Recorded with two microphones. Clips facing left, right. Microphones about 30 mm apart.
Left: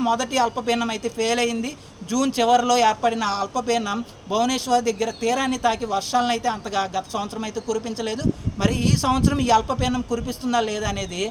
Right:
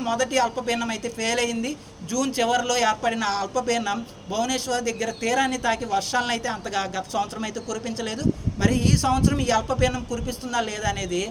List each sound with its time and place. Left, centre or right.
0.0 s a man's voice: left
0.6 s a man's voice: left
2.0 s a man's voice: left
2.8 s a man's voice: centre
3.1 s a man's voice: centre
4.3 s a man's voice: left